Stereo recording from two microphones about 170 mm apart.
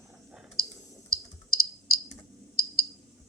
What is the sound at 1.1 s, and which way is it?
Clicking, 60° left (ahead or behind).